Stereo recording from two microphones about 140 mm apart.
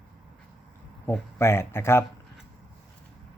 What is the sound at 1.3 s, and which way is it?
Speech, 20° left (ahead or behind).